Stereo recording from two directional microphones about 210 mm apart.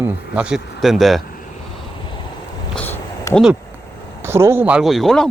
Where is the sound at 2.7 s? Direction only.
10° left (ahead or behind).